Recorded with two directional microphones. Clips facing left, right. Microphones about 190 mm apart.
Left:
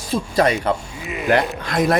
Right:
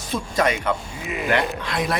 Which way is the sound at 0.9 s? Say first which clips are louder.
Left 1 dB; centre (ahead or behind).